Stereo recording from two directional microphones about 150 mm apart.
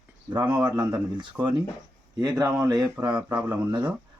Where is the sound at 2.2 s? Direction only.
25° right (ahead or behind).